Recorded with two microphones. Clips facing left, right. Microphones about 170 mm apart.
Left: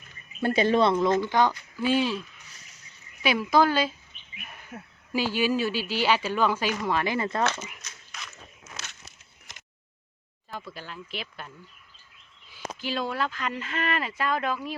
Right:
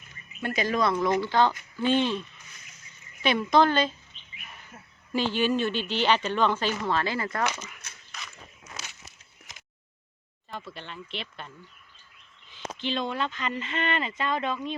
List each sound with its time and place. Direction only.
0.4 s speech: 30° left (ahead or behind); by 2.2 s 5° left (ahead or behind)
3.2 s speech: 5° left (ahead or behind)
4.7 s speech: 65° left (ahead or behind)
5.1 s speech: 10° left (ahead or behind)
7.8 s walk: 55° right (ahead or behind)
10.5 s speech: centre (ahead or behind)